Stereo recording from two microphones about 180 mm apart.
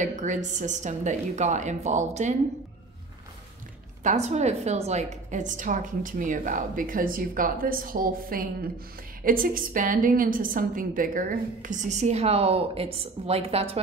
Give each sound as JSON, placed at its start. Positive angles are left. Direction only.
{"t": 0.0, "sound": "a woman's voice", "side_deg": -45}
{"t": 4.0, "sound": "a woman's voice", "side_deg": -40}